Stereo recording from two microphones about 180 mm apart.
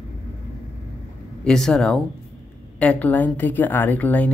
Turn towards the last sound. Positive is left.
turn(degrees=10)  # may be behind; listen again after turning